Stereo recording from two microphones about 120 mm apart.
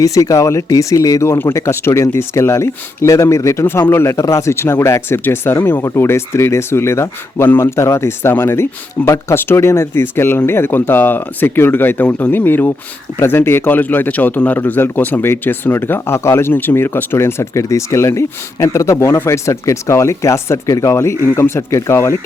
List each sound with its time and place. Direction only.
0.0 s a man's voice: 30° left (ahead or behind)